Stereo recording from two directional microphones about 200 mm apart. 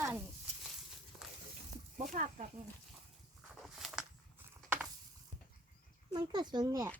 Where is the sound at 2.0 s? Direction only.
40° right (ahead or behind).